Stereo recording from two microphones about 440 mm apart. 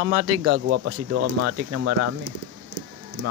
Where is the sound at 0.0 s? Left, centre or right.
Right.